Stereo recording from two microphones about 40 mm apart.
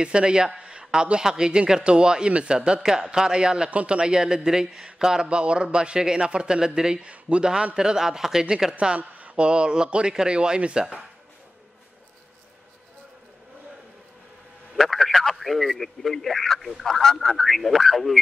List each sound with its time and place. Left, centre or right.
0.0 s a man's voice: right
8.7 s speech: right
9.5 s a man's voice: right
14.8 s speech: centre